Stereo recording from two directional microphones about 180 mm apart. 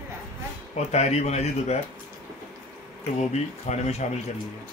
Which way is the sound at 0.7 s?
40° left (ahead or behind).